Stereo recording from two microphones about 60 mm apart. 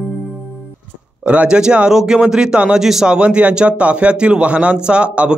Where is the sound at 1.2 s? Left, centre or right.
Right; by 3.1 s centre.